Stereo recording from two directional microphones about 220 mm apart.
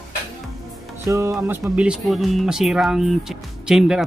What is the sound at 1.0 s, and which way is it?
Speech, 15° right (ahead or behind).